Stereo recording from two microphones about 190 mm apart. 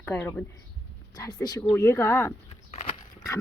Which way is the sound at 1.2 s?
20° left (ahead or behind).